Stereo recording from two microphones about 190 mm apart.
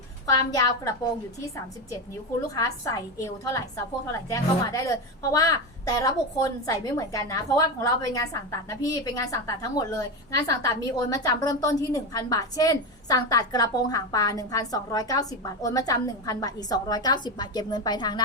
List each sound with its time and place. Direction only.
0.3 s a woman's voice: 20° left (ahead or behind)